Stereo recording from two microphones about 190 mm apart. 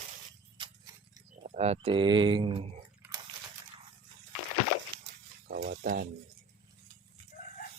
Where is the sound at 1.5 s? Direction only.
35° right (ahead or behind).